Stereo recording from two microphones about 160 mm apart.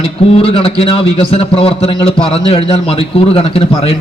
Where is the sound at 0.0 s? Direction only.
35° left (ahead or behind).